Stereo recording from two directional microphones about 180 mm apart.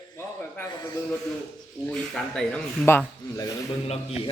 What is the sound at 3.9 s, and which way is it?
Speech, 35° left (ahead or behind).